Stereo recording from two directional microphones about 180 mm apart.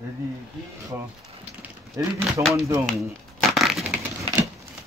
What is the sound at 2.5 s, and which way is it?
Speech, 15° right (ahead or behind).